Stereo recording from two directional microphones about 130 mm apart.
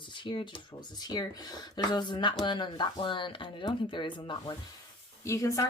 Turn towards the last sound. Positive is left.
turn(degrees=25)  # may be behind; listen again after turning